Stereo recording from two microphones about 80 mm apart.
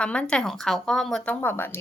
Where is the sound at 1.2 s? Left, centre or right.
Left.